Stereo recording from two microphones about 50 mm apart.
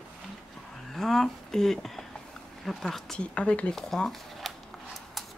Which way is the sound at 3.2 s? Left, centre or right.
Left.